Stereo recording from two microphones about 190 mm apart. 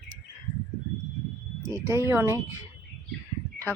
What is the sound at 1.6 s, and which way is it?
Speech, 15° right (ahead or behind).